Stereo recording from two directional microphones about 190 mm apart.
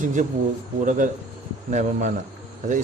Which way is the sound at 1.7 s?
40° right (ahead or behind).